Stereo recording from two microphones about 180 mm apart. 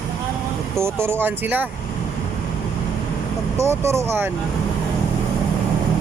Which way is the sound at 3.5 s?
15° right (ahead or behind).